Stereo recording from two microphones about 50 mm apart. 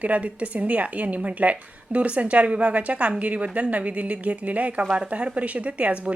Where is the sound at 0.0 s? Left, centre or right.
Right.